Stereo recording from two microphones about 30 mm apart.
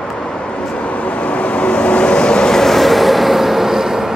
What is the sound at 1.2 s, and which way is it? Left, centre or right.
Vehicle, left.